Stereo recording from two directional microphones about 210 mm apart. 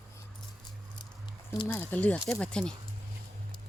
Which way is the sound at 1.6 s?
10° left (ahead or behind).